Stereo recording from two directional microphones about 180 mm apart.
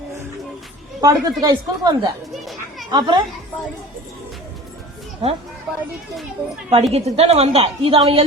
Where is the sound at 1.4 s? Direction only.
20° right (ahead or behind).